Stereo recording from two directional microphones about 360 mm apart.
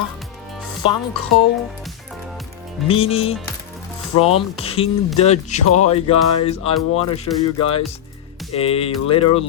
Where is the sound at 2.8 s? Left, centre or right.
Centre.